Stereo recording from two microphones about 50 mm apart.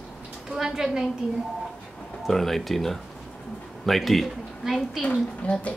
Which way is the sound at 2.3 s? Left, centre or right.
Centre.